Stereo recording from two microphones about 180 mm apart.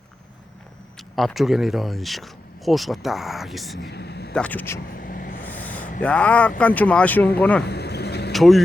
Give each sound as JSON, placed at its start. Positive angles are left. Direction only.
{"t": 0.9, "sound": "speech", "side_deg": 0}
{"t": 3.8, "sound": "speech", "side_deg": 70}
{"t": 4.4, "sound": "speech", "side_deg": 10}
{"t": 4.9, "sound": "vehicle", "side_deg": 55}
{"t": 5.4, "sound": "a sound", "side_deg": 10}
{"t": 6.0, "sound": "speech", "side_deg": 5}
{"t": 7.6, "sound": "vehicle", "side_deg": 65}
{"t": 8.3, "sound": "speech", "side_deg": 0}